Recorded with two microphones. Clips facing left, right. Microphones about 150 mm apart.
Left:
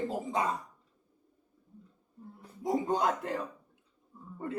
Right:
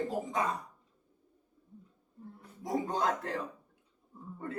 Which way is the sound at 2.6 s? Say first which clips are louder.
Left 3 dB; 20° left (ahead or behind).